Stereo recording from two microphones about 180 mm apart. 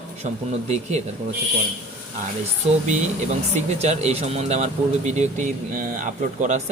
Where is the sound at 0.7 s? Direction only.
40° right (ahead or behind).